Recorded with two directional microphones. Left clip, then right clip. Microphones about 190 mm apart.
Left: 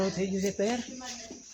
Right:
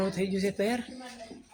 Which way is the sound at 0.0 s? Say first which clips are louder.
Even; 5° right (ahead or behind).